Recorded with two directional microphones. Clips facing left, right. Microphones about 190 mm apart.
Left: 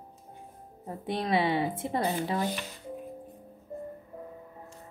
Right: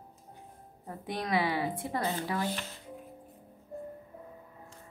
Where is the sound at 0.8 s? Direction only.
25° left (ahead or behind).